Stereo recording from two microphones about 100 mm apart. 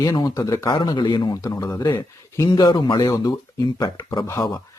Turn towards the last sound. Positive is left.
turn(degrees=30)  # may be behind; listen again after turning